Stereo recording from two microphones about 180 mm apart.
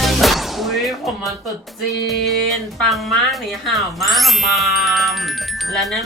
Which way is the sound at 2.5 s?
Centre (ahead or behind).